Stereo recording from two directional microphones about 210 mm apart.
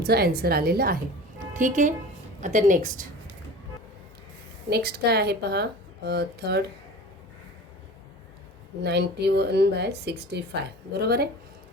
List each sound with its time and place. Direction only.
0.0 s a woman's voice: 50° right (ahead or behind)
4.7 s speech: 50° right (ahead or behind)
8.8 s speech: 55° right (ahead or behind)